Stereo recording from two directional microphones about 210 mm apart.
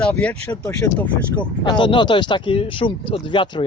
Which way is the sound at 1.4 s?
20° left (ahead or behind).